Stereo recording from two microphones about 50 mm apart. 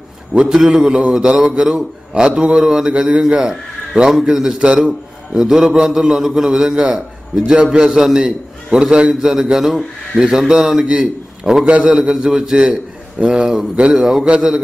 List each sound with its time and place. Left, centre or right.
0.5 s a man's voice: centre
2.9 s a man's voice: right
3.2 s a man's voice: centre